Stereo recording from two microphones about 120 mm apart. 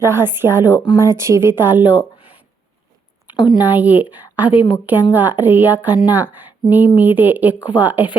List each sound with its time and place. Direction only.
0.0 s a woman's voice: 20° right (ahead or behind)
1.0 s speech: 25° right (ahead or behind)
3.6 s speech: 15° right (ahead or behind)